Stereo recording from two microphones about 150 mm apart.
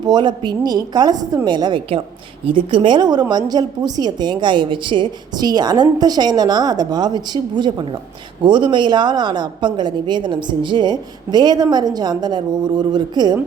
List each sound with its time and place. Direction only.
0.0 s a woman's voice: 30° right (ahead or behind)